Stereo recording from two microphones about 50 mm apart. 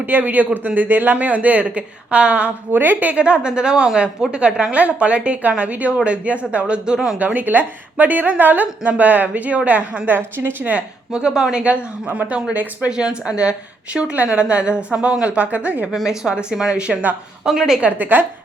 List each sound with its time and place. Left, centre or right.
0.0 s a woman's voice: right
2.7 s a woman's voice: right
3.2 s a woman's voice: right
7.2 s a woman's voice: right
10.2 s a woman's voice: right
10.7 s a woman's voice: right
12.0 s a woman's voice: right
12.3 s a woman's voice: right
12.9 s a woman's voice: centre
16.0 s a woman's voice: centre
17.7 s a woman's voice: right